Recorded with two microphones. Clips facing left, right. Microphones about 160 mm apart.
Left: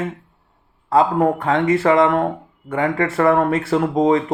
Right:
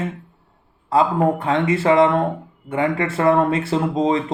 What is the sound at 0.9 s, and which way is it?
Speech, 25° right (ahead or behind).